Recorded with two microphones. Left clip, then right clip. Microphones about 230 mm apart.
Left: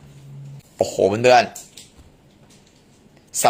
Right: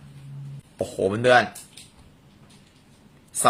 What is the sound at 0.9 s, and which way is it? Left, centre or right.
Speech, left.